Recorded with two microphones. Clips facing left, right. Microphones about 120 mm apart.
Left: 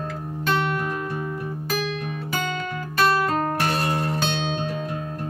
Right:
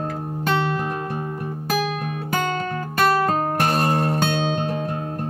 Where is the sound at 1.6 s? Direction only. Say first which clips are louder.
Right 5 dB; 50° right (ahead or behind).